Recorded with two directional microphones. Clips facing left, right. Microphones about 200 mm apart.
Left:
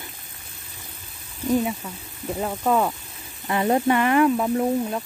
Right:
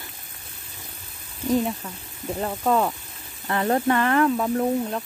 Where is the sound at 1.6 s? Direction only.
5° left (ahead or behind).